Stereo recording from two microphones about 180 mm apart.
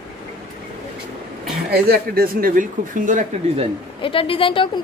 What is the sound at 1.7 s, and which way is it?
Speech, 60° right (ahead or behind).